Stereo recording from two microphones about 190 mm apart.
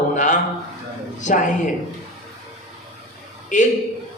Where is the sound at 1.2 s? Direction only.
40° left (ahead or behind).